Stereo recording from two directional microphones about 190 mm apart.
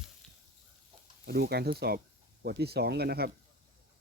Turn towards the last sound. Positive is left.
turn(degrees=-55)  # may be behind; listen again after turning